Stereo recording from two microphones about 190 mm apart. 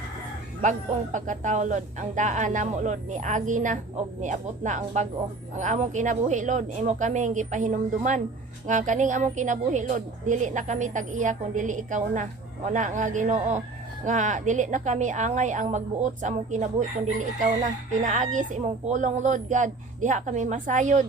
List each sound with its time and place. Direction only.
0.6 s a woman's voice: 40° right (ahead or behind)